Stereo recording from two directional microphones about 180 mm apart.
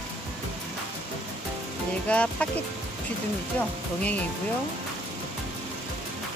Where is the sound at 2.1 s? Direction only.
5° left (ahead or behind).